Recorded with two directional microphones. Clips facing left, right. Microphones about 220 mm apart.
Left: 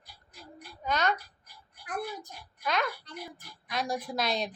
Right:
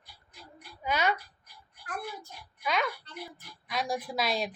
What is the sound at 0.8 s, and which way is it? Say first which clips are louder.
Speech: even; 10° right (ahead or behind).